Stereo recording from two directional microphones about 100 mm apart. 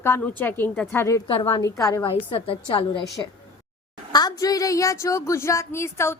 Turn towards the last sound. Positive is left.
turn(degrees=25)  # may be behind; listen again after turning